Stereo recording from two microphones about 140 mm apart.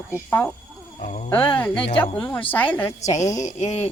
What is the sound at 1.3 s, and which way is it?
Speech, 10° left (ahead or behind).